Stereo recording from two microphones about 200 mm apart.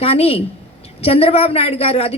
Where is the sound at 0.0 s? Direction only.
30° left (ahead or behind).